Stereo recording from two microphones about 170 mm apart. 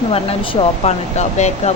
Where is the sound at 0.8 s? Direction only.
40° left (ahead or behind).